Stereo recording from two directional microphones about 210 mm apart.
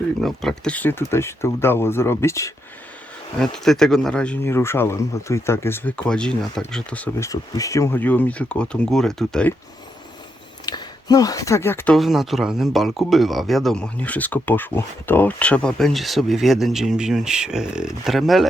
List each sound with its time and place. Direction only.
0.2 s speech: centre (ahead or behind)
3.4 s speech: centre (ahead or behind)
10.7 s speech: 20° left (ahead or behind)
11.9 s speech: centre (ahead or behind)